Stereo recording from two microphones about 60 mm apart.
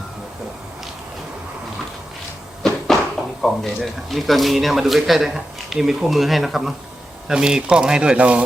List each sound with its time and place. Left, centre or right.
2.6 s a sound: centre
3.4 s speech: centre
7.3 s speech: centre